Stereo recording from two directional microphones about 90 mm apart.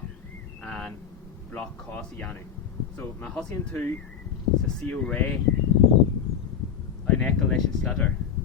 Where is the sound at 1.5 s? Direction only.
15° left (ahead or behind).